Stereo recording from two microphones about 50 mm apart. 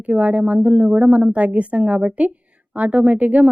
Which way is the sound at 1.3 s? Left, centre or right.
Right.